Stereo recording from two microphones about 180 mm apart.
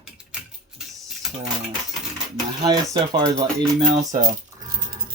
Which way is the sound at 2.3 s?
20° right (ahead or behind).